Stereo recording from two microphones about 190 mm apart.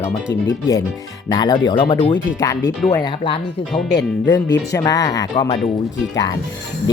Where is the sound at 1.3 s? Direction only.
20° left (ahead or behind).